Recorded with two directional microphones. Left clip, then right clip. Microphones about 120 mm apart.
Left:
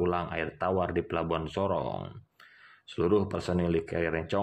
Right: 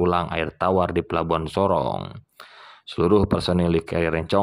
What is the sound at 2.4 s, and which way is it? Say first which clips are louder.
Speech: right 10 dB; 35° right (ahead or behind).